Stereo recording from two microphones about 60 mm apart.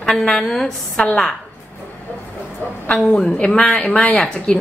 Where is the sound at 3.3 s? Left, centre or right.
Centre.